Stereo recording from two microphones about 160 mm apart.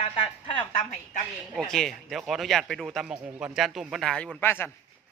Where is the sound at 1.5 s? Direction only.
5° left (ahead or behind).